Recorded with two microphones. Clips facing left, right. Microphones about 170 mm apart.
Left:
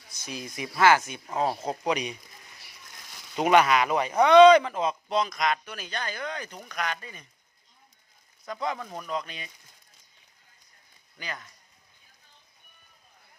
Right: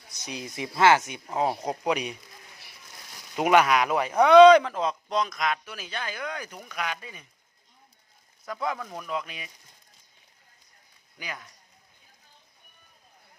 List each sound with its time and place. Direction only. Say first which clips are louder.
0.1 s speech: right 1 dB; 20° right (ahead or behind)
3.3 s speech: even; 10° right (ahead or behind)
8.4 s speech: right 1 dB; 5° right (ahead or behind)
11.2 s speech: even; 10° right (ahead or behind)